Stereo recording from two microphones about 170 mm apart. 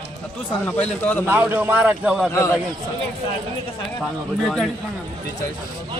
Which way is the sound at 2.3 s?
15° left (ahead or behind).